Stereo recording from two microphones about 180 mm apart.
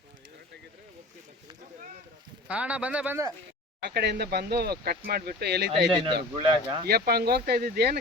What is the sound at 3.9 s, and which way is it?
Speech, 65° right (ahead or behind).